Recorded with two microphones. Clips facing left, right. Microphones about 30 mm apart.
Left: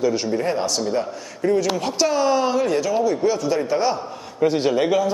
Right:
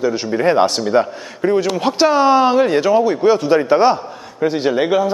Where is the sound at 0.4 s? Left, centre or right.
Right.